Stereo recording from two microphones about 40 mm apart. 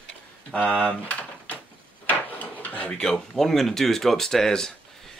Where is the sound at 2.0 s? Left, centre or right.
Left.